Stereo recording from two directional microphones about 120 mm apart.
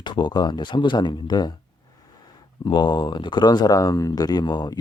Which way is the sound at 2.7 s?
35° left (ahead or behind).